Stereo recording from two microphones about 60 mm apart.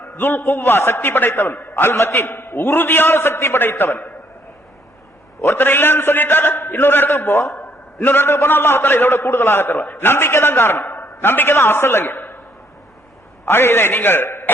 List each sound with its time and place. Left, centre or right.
0.0 s a man's voice: left
1.5 s a man's voice: left
5.5 s a man's voice: left
7.1 s a man's voice: left
13.4 s a man's voice: left